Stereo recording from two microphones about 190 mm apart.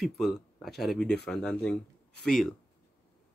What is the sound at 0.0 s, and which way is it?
Speech, centre (ahead or behind).